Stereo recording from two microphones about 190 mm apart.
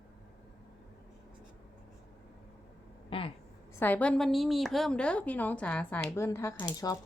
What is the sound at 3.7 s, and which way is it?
A woman's voice, 10° left (ahead or behind).